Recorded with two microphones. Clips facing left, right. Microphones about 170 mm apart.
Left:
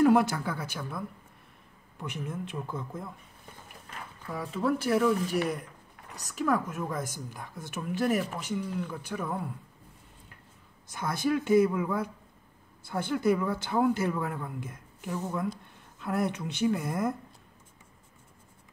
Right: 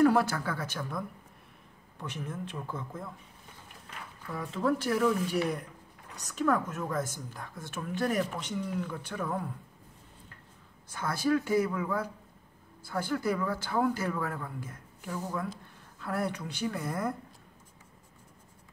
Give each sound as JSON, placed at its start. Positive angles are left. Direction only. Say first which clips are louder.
{"t": 0.0, "sound": "a woman's voice", "louder": "left 2 dB", "side_deg": 20}
{"t": 4.3, "sound": "speech", "louder": "left 1 dB", "side_deg": 5}
{"t": 6.3, "sound": "a woman's voice", "louder": "even", "side_deg": 10}
{"t": 10.9, "sound": "speech", "louder": "even", "side_deg": 20}